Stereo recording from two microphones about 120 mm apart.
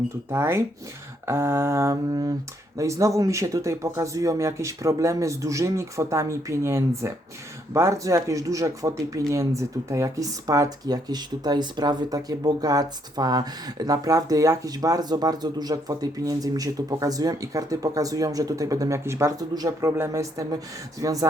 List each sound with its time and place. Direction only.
0.3 s speech: 20° right (ahead or behind)